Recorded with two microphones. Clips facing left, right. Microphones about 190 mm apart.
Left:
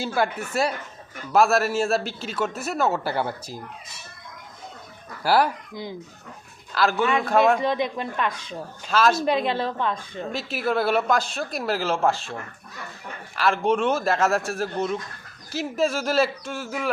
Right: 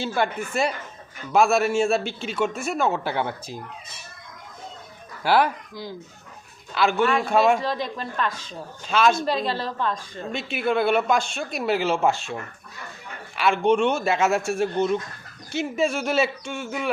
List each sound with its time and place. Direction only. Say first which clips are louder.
0.0 s a woman's voice: even; 5° left (ahead or behind)
5.2 s speech: even; 5° left (ahead or behind)
6.7 s a woman's voice: right 1 dB; centre (ahead or behind)
7.6 s a woman's voice: left 3 dB; 15° left (ahead or behind)
8.9 s a woman's voice: even; centre (ahead or behind)
9.2 s a woman's voice: left 2 dB; 15° left (ahead or behind)